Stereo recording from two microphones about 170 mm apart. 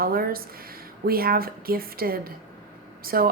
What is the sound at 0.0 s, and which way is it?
A woman's voice, 60° right (ahead or behind).